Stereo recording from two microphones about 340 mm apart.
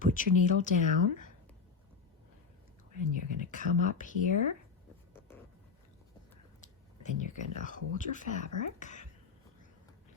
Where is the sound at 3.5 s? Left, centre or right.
Left.